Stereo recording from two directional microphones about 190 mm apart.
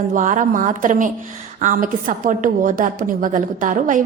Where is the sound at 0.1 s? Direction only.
40° right (ahead or behind).